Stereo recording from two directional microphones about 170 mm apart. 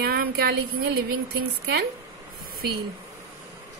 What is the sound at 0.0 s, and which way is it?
Speech, 70° right (ahead or behind).